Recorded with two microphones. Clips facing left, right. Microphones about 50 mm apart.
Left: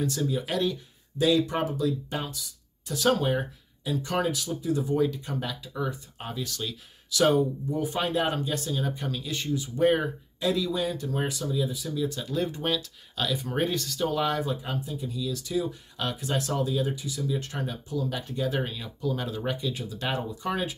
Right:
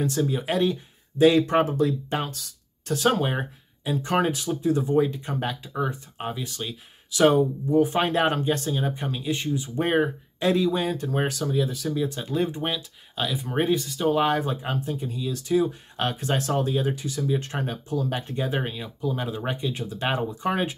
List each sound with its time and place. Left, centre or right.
0.0 s speech: right
1.4 s speech: right
3.0 s speech: right
11.9 s speech: right
14.0 s speech: right